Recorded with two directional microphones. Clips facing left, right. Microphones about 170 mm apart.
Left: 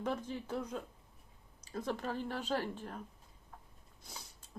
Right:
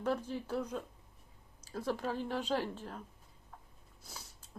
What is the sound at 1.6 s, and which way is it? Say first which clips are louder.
Speech: right 2 dB; 5° right (ahead or behind).